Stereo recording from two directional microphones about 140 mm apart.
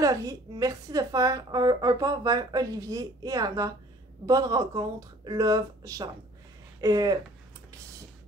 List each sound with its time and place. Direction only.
0.0 s a woman's voice: 25° right (ahead or behind)